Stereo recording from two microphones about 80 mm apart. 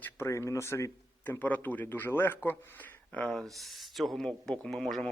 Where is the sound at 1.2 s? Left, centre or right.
Left.